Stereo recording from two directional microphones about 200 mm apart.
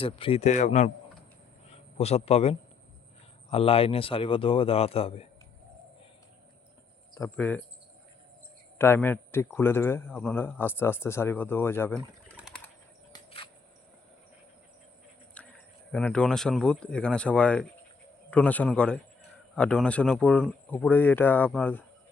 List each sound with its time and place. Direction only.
0.0 s a man's voice: 25° left (ahead or behind)
7.1 s speech: 10° left (ahead or behind)
8.8 s a man's voice: 10° left (ahead or behind)
12.4 s a sound: centre (ahead or behind)
13.1 s a sound: 25° left (ahead or behind)
15.4 s a man's voice: 5° left (ahead or behind)